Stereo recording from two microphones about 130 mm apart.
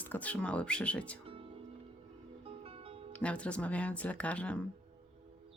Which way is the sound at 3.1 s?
10° left (ahead or behind).